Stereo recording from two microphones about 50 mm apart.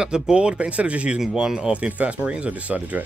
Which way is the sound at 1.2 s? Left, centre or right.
Centre.